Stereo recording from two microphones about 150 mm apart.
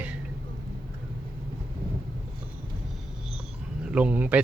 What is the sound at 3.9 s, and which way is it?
Speech, 10° right (ahead or behind).